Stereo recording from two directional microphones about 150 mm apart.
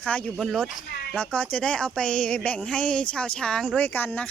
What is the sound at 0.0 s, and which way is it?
Speech, 5° left (ahead or behind).